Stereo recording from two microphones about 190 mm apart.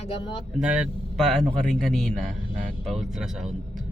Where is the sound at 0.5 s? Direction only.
5° right (ahead or behind).